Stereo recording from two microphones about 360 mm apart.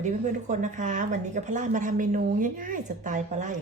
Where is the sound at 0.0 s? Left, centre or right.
Centre.